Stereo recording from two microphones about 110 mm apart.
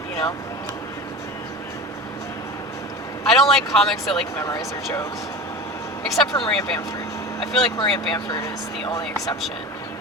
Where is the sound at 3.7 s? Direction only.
5° left (ahead or behind).